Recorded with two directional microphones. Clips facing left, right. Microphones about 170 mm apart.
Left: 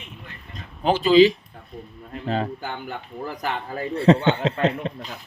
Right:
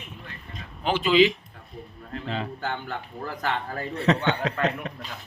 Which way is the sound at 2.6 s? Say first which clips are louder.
Right 1 dB; 15° left (ahead or behind).